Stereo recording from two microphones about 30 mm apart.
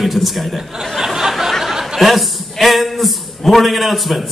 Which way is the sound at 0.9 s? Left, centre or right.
Centre.